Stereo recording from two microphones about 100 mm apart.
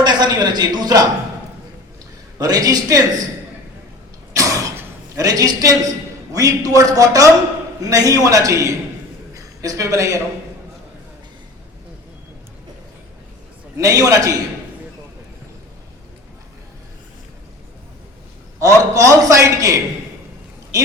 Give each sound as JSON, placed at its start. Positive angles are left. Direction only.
{"t": 0.0, "sound": "a man's voice", "side_deg": -45}
{"t": 2.4, "sound": "a man's voice", "side_deg": -40}
{"t": 4.4, "sound": "a sound", "side_deg": -35}
{"t": 5.1, "sound": "a man's voice", "side_deg": -35}
{"t": 13.7, "sound": "a man's voice", "side_deg": -35}
{"t": 18.6, "sound": "a man's voice", "side_deg": -35}